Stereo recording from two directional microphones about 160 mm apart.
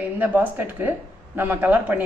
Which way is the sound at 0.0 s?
10° right (ahead or behind).